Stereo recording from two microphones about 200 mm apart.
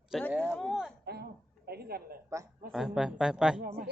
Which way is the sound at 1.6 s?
50° right (ahead or behind).